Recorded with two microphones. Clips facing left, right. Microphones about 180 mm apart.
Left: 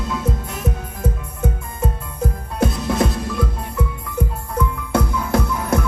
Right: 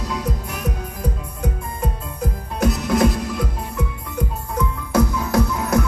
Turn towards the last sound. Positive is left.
turn(degrees=25)  # may be behind; listen again after turning